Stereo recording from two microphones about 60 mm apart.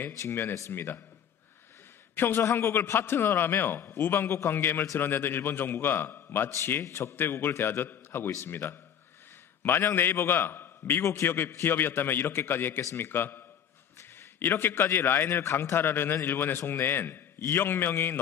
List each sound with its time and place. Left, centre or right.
0.3 s a man's voice: left
2.1 s a man's voice: left
6.7 s a man's voice: left
7.2 s a man's voice: left